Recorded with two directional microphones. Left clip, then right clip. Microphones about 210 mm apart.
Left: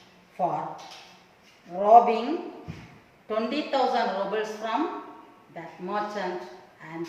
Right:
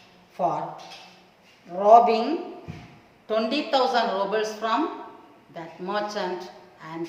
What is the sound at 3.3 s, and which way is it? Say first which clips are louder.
A woman's voice: right 4 dB; 20° right (ahead or behind).